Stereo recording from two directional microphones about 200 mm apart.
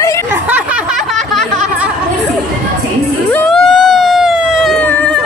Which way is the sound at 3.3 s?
5° left (ahead or behind).